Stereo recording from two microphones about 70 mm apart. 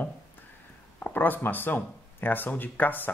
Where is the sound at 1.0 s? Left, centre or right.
Left.